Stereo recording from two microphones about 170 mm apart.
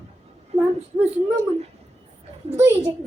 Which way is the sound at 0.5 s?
40° right (ahead or behind).